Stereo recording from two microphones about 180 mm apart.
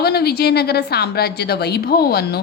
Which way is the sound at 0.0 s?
60° left (ahead or behind).